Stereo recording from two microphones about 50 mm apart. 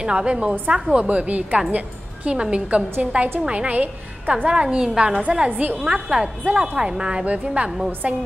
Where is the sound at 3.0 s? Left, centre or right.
Right.